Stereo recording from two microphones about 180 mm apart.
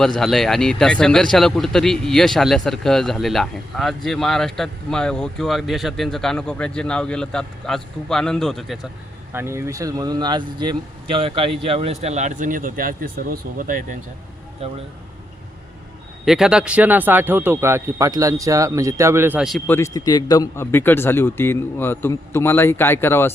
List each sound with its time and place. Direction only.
0.0 s speech: centre (ahead or behind)
9.3 s speech: 15° right (ahead or behind); by 14.0 s 50° right (ahead or behind)
14.6 s speech: 35° right (ahead or behind)
16.2 s speech: centre (ahead or behind)
19.7 s a man's voice: 15° left (ahead or behind)